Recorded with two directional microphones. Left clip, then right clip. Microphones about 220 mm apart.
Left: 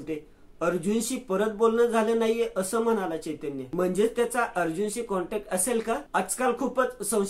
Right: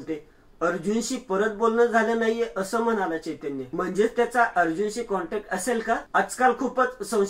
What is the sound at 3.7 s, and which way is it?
Speech, 45° left (ahead or behind).